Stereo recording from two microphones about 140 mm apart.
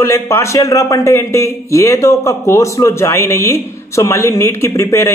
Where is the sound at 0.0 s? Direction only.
20° left (ahead or behind).